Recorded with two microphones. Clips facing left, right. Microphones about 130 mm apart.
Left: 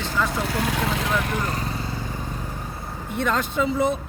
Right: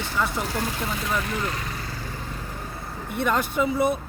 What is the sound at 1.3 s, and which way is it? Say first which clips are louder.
Speech: left 2 dB; 35° left (ahead or behind).